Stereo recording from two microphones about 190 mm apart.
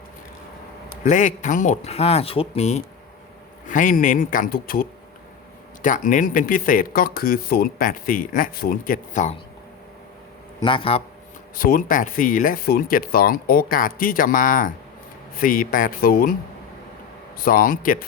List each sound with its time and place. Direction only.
1.0 s a man's voice: 40° left (ahead or behind)
10.6 s a man's voice: 25° left (ahead or behind)
11.5 s speech: 50° left (ahead or behind)
17.3 s speech: 50° left (ahead or behind)